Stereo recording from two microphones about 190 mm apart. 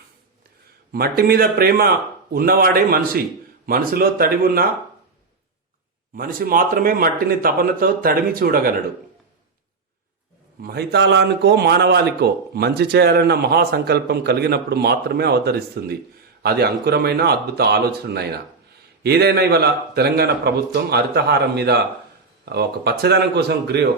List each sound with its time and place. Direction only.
0.9 s speech: 55° right (ahead or behind)
6.1 s speech: 50° right (ahead or behind)
10.6 s speech: 55° right (ahead or behind)